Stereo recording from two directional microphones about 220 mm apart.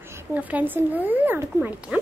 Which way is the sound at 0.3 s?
5° right (ahead or behind).